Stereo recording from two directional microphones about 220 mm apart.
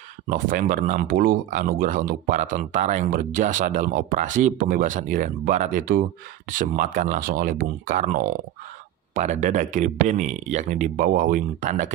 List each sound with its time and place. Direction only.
0.3 s speech: 40° right (ahead or behind)